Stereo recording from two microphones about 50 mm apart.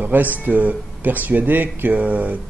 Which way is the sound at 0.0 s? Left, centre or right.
Right.